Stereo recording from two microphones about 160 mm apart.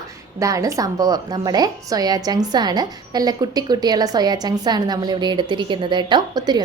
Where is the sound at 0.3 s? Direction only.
20° right (ahead or behind).